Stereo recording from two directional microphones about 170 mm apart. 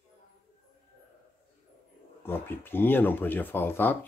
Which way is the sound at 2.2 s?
15° left (ahead or behind).